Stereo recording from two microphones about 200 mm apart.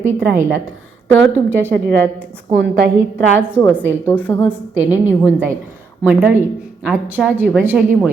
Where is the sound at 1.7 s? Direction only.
55° right (ahead or behind).